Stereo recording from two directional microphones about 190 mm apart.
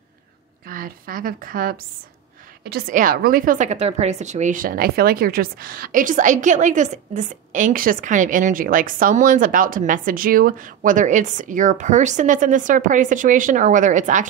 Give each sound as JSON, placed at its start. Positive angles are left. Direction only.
{"t": 0.7, "sound": "a woman's voice", "side_deg": -50}
{"t": 2.9, "sound": "a woman's voice", "side_deg": -45}